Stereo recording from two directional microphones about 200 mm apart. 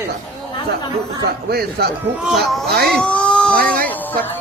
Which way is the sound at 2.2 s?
Centre (ahead or behind).